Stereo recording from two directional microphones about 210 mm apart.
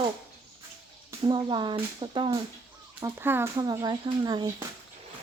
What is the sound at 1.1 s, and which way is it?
Speech, 20° right (ahead or behind).